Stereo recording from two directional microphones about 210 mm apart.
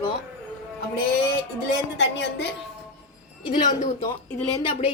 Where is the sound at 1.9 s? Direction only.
55° left (ahead or behind).